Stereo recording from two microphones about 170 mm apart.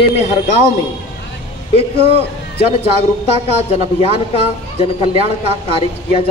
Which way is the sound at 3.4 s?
35° left (ahead or behind).